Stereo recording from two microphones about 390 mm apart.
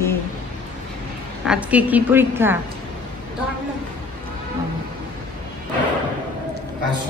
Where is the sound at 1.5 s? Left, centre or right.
Centre.